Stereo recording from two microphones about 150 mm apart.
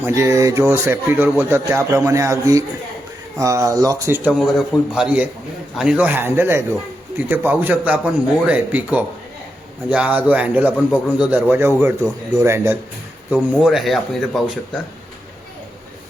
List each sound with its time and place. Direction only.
0.0 s speech: 20° right (ahead or behind)
4.4 s speech: centre (ahead or behind)
13.3 s speech: 5° right (ahead or behind)